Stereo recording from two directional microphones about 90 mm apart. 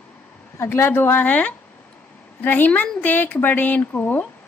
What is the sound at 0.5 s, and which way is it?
A woman's voice, 25° left (ahead or behind).